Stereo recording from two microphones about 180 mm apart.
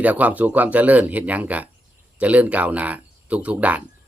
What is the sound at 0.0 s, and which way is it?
Speech, 10° right (ahead or behind).